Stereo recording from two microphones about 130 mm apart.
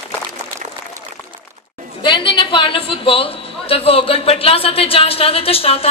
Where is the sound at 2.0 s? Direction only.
40° left (ahead or behind).